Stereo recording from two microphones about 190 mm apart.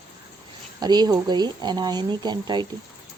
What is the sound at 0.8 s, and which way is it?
A woman's voice, 20° right (ahead or behind).